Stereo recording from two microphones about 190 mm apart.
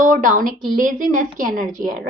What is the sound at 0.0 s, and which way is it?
A woman's voice, 45° right (ahead or behind).